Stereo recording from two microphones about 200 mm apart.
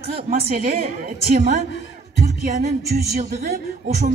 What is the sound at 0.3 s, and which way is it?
A woman's voice, 45° right (ahead or behind).